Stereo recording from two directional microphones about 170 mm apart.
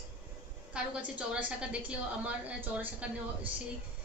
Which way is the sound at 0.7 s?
5° right (ahead or behind).